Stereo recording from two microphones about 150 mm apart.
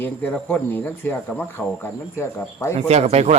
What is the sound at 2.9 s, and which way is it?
Speech, 45° right (ahead or behind).